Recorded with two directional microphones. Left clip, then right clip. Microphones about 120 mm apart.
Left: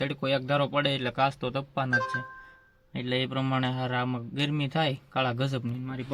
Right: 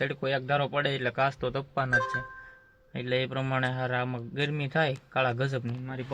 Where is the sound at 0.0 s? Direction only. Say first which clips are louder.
Left 1 dB; 20° left (ahead or behind).